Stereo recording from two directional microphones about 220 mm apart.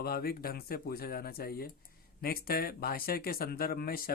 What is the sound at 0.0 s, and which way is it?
Speech, 45° left (ahead or behind).